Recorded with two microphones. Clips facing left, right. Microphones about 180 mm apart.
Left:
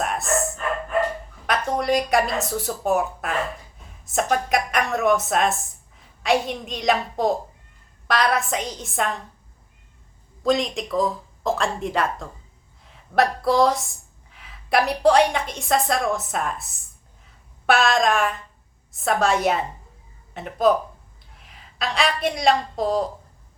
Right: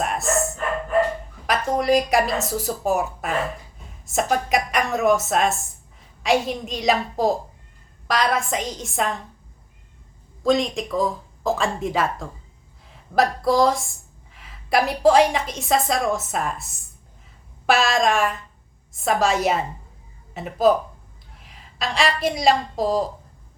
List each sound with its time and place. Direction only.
0.0 s dog: centre (ahead or behind)
1.5 s speech: centre (ahead or behind)
10.4 s a woman's voice: centre (ahead or behind)